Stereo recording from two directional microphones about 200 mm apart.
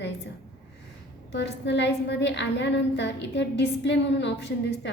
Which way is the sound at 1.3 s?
60° left (ahead or behind).